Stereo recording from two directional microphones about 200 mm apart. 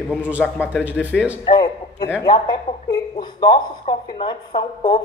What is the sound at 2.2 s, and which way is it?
Speech, 20° left (ahead or behind).